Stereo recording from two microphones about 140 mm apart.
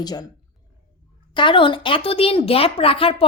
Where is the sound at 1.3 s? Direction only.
35° left (ahead or behind).